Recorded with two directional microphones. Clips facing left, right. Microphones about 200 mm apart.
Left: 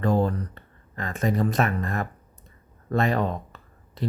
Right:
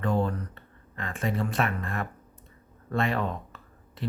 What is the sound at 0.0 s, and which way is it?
Speech, 40° left (ahead or behind).